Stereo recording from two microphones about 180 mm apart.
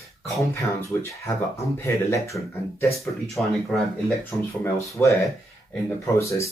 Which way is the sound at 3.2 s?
Centre (ahead or behind).